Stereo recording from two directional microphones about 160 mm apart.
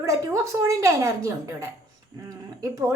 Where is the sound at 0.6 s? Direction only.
20° right (ahead or behind).